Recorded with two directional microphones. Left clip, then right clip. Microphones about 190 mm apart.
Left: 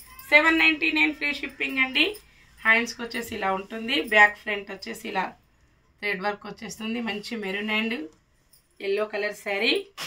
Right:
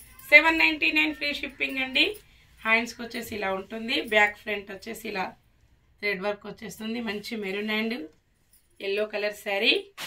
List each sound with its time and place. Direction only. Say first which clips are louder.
0.3 s speech: even; 10° left (ahead or behind)